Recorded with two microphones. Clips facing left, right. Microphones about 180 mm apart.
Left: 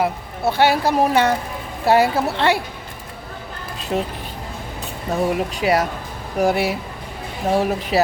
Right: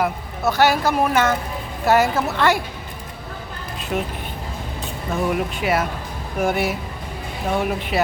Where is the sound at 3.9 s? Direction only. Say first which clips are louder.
Left 2 dB; 35° left (ahead or behind).